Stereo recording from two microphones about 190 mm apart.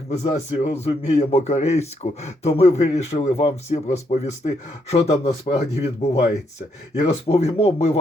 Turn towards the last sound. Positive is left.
turn(degrees=30)  # may be behind; listen again after turning